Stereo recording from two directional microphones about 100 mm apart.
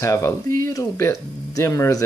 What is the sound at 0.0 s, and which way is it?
Speech, 30° left (ahead or behind).